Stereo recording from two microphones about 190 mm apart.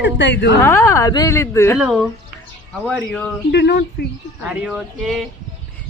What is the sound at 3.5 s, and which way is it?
Speech, 60° left (ahead or behind).